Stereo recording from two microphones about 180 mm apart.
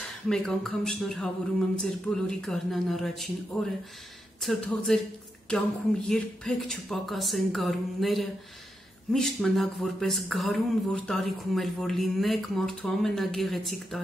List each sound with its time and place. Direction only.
0.0 s speech: centre (ahead or behind)